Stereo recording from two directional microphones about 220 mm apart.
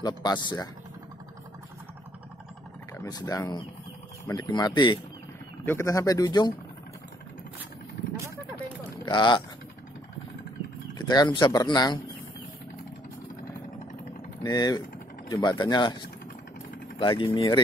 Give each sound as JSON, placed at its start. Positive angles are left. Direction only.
{"t": 0.0, "sound": "speech", "side_deg": 20}
{"t": 2.9, "sound": "speech", "side_deg": 15}
{"t": 9.0, "sound": "speech", "side_deg": 20}
{"t": 11.0, "sound": "speech", "side_deg": 20}
{"t": 14.4, "sound": "speech", "side_deg": 20}
{"t": 17.0, "sound": "speech", "side_deg": 20}